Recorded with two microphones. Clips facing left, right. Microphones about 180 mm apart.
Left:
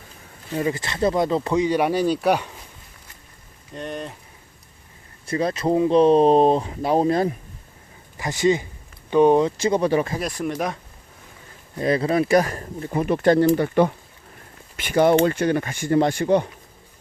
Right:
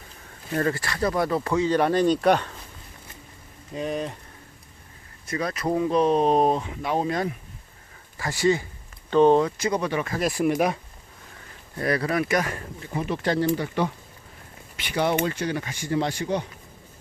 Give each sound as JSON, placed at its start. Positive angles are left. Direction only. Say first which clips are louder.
{"t": 0.5, "sound": "speech", "louder": "left 1 dB", "side_deg": 15}
{"t": 3.8, "sound": "speech", "louder": "right 3 dB", "side_deg": 0}
{"t": 5.2, "sound": "speech", "louder": "left 5 dB", "side_deg": 30}
{"t": 8.2, "sound": "speech", "louder": "left 2 dB", "side_deg": 20}
{"t": 9.6, "sound": "speech", "louder": "left 6 dB", "side_deg": 25}
{"t": 10.2, "sound": "speech", "louder": "right 3 dB", "side_deg": -5}
{"t": 11.8, "sound": "speech", "louder": "left 4 dB", "side_deg": 25}